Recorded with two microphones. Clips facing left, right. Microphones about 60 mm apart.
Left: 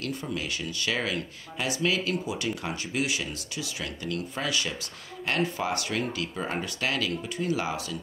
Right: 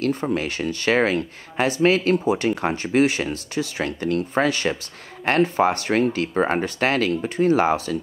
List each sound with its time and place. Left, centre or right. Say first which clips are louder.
0.0 s speech: right 10 dB; right